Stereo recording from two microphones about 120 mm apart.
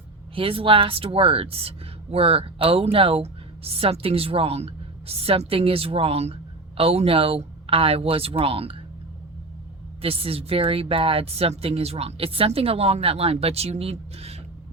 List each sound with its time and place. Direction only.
0.3 s speech: 50° right (ahead or behind)
10.0 s a woman's voice: 55° right (ahead or behind)